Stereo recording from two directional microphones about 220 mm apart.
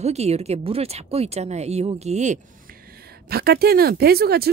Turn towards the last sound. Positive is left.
turn(degrees=-45)  # may be behind; listen again after turning